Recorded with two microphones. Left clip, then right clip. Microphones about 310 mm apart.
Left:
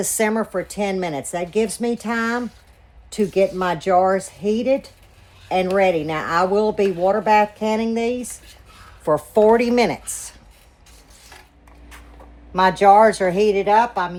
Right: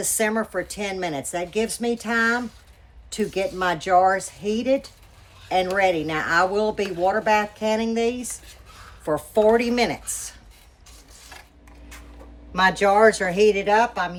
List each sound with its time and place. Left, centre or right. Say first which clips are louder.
0.0 s speech: left 3 dB; centre
12.5 s speech: left 5 dB; centre